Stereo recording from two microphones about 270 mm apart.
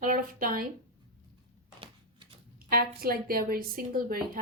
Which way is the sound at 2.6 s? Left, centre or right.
Right.